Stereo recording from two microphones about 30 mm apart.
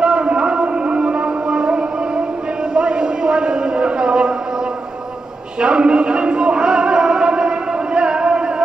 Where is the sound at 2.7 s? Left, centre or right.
Right.